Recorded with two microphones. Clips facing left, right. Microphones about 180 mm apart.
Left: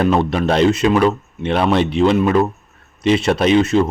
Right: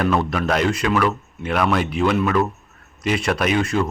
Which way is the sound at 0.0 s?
25° left (ahead or behind).